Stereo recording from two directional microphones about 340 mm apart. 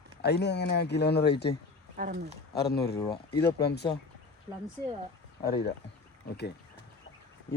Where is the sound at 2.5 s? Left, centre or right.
Left.